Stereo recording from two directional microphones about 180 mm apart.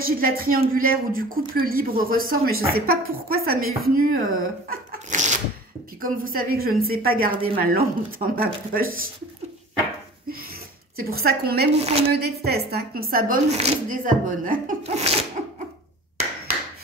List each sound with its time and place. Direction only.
0.0 s a woman's voice: 55° right (ahead or behind)
11.0 s a woman's voice: 55° right (ahead or behind)
13.5 s speech: 45° right (ahead or behind)
14.8 s sneeze: 35° right (ahead or behind)